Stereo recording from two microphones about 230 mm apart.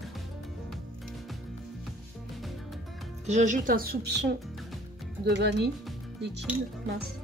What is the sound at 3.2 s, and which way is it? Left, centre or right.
Speech, right.